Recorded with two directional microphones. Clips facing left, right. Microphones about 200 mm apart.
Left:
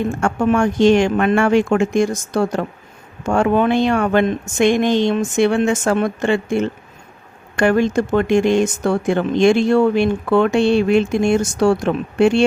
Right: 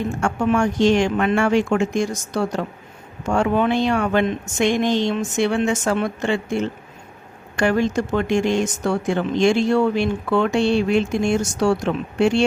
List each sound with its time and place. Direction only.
0.2 s speech: 55° left (ahead or behind)